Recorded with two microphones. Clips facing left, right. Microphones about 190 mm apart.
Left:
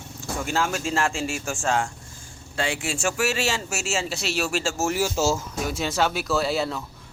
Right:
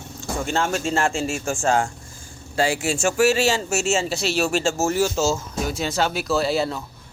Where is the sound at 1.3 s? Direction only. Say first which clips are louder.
Right 4 dB; 40° right (ahead or behind).